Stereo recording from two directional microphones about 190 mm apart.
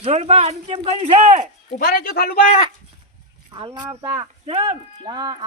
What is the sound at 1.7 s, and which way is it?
Speech, 50° left (ahead or behind).